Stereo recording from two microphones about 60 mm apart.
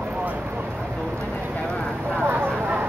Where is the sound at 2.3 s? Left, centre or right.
Right.